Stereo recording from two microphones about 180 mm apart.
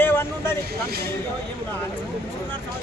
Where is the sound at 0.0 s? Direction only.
10° left (ahead or behind).